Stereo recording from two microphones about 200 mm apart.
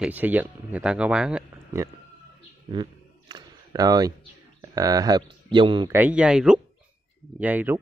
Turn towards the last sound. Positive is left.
turn(degrees=-10)  # may be behind; listen again after turning